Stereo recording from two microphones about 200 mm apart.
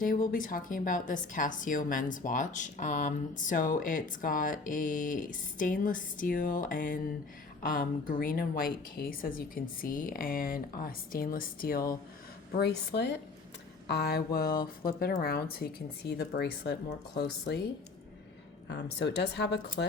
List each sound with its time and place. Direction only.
0.0 s a woman's voice: 45° left (ahead or behind)
12.5 s a woman's voice: 55° left (ahead or behind)
18.7 s speech: 55° left (ahead or behind)